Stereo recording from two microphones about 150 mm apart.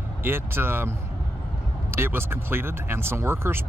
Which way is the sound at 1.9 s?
15° right (ahead or behind).